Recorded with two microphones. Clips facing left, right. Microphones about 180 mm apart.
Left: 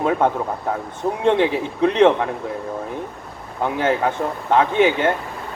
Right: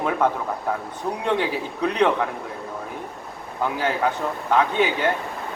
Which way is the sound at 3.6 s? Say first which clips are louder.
Left 3 dB; 25° left (ahead or behind).